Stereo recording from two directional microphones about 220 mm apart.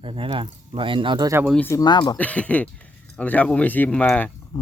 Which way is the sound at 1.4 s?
5° left (ahead or behind).